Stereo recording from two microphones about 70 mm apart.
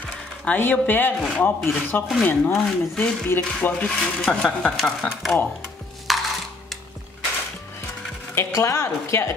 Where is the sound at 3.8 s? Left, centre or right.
Centre.